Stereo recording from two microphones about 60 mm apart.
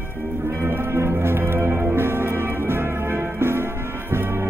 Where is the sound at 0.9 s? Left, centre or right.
Right.